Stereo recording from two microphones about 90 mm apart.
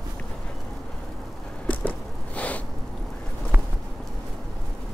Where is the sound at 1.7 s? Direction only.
15° left (ahead or behind).